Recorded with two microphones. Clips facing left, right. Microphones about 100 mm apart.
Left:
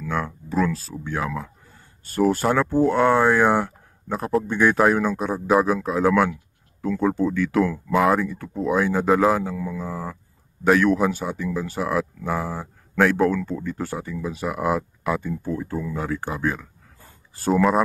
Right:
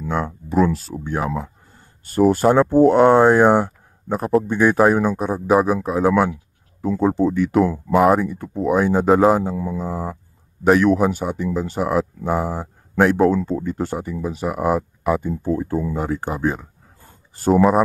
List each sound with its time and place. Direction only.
0.0 s speech: 20° right (ahead or behind)